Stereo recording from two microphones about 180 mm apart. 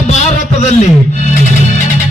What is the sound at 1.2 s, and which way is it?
Music, 40° left (ahead or behind).